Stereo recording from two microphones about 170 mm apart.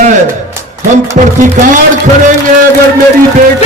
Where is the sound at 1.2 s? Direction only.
50° right (ahead or behind).